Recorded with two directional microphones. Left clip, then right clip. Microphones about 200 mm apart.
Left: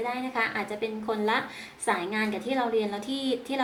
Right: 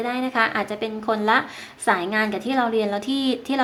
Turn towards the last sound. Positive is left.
turn(degrees=-45)  # may be behind; listen again after turning